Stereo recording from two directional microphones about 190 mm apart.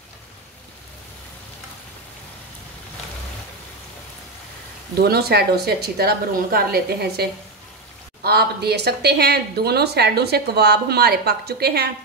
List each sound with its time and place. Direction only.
5.0 s speech: 55° right (ahead or behind)